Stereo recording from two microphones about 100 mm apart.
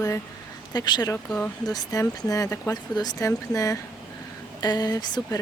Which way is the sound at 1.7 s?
40° left (ahead or behind).